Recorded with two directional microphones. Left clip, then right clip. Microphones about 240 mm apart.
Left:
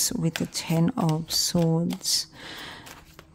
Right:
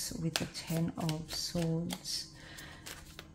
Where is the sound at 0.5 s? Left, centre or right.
Left.